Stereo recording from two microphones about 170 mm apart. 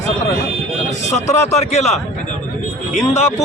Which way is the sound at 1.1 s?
40° left (ahead or behind).